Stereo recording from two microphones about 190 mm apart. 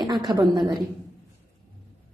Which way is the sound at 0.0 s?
20° right (ahead or behind).